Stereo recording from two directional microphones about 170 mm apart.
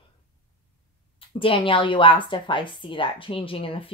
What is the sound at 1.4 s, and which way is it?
A woman's voice, 30° left (ahead or behind).